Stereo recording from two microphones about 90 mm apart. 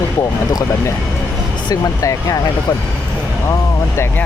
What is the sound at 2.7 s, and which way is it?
Speech, 50° left (ahead or behind).